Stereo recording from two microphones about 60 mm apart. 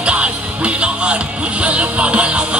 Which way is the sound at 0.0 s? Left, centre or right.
Centre.